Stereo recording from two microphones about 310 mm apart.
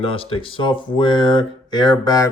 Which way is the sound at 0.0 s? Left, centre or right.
Centre.